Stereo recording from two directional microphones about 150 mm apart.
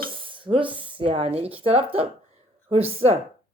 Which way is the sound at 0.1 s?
35° right (ahead or behind).